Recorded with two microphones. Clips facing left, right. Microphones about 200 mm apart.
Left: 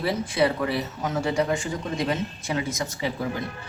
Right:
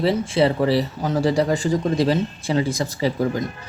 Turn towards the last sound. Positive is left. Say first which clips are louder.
# right 7 dB
turn(degrees=-40)  # may be behind; listen again after turning